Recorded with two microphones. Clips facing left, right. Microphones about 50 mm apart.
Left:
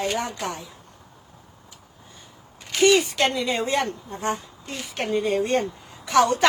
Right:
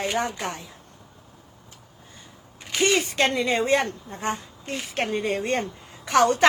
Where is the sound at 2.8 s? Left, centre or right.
Right.